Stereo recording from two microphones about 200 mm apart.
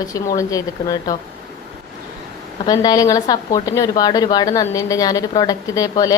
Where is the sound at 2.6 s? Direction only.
20° left (ahead or behind).